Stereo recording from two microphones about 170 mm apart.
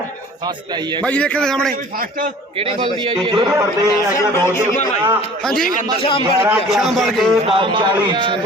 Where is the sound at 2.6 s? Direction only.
35° right (ahead or behind).